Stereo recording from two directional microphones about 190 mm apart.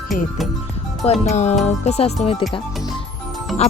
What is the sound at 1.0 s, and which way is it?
Music, 35° left (ahead or behind).